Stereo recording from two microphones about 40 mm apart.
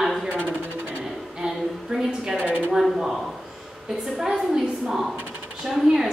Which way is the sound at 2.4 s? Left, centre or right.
Left.